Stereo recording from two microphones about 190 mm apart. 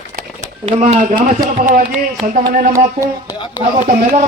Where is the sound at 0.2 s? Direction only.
35° right (ahead or behind).